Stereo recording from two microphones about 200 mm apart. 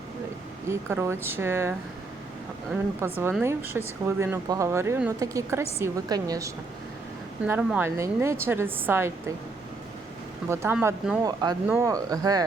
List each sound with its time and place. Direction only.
0.7 s speech: 15° right (ahead or behind)
3.0 s speech: 10° right (ahead or behind)
10.5 s speech: 10° right (ahead or behind)
11.2 s speech: 20° right (ahead or behind)